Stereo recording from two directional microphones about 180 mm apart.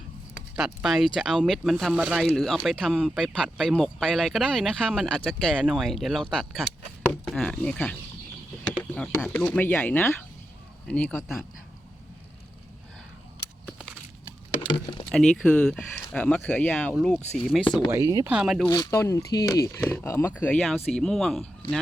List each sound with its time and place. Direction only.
0.5 s speech: 5° right (ahead or behind)
14.7 s a sound: 25° left (ahead or behind)
15.1 s speech: 5° left (ahead or behind)
17.9 s speech: 20° right (ahead or behind)
18.3 s speech: 5° right (ahead or behind)
18.6 s speech: 20° left (ahead or behind); by 21.8 s centre (ahead or behind)